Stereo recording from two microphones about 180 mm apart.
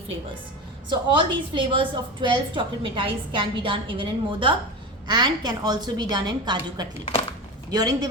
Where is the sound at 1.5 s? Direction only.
25° right (ahead or behind).